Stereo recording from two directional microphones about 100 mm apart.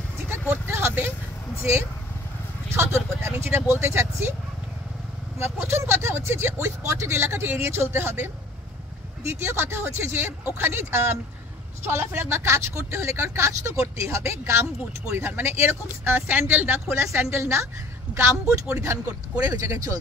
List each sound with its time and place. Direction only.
0.5 s a sound: 25° right (ahead or behind)
1.6 s speech: 25° right (ahead or behind)
5.4 s speech: 25° right (ahead or behind)